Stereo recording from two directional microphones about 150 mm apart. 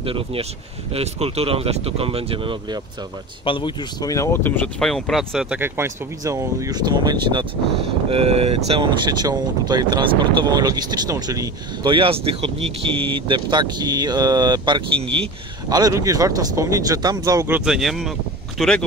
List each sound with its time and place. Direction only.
0.0 s speech: 40° right (ahead or behind)
3.4 s speech: 30° left (ahead or behind); by 7.4 s 30° right (ahead or behind)
8.1 s speech: 40° right (ahead or behind); by 17.6 s 20° right (ahead or behind)
17.6 s speech: 5° right (ahead or behind)